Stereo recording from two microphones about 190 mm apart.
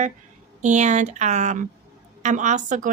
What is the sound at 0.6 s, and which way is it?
Speech, 40° right (ahead or behind).